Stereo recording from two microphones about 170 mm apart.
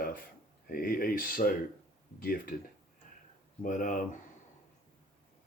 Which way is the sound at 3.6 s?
50° left (ahead or behind).